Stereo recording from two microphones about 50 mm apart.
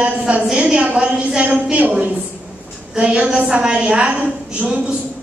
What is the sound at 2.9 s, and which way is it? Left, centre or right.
A woman's voice, centre.